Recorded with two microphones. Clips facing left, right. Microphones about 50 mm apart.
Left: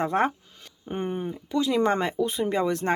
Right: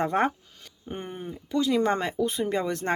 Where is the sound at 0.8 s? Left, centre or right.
Centre.